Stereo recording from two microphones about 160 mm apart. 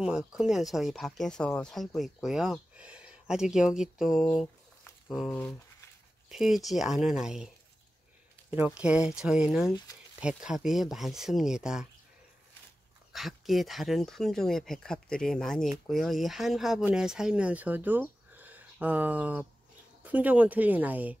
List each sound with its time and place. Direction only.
0.3 s speech: 5° right (ahead or behind)
5.3 s speech: 10° left (ahead or behind)
6.3 s speech: centre (ahead or behind)
8.5 s speech: 5° right (ahead or behind)
13.1 s speech: centre (ahead or behind)